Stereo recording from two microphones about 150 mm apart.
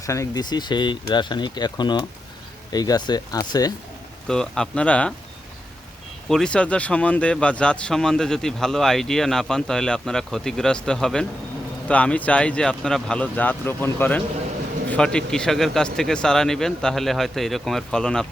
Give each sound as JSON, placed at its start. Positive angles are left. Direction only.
{"t": 0.0, "sound": "speech", "side_deg": 20}
{"t": 4.3, "sound": "a man's voice", "side_deg": 5}
{"t": 6.2, "sound": "a man's voice", "side_deg": 5}